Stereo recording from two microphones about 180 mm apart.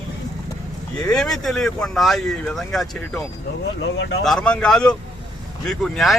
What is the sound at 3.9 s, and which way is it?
Speech, 90° left.